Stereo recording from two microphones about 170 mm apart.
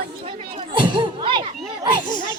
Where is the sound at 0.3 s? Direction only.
30° right (ahead or behind).